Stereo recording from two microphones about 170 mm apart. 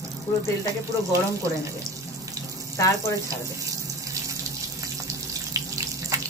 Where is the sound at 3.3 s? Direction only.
20° right (ahead or behind).